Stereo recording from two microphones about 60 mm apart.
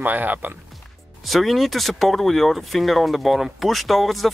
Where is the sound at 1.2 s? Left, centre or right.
Centre.